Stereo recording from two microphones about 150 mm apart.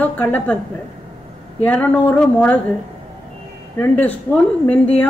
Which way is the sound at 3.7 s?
10° left (ahead or behind).